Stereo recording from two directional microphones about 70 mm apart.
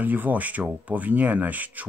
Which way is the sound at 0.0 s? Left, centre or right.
Right.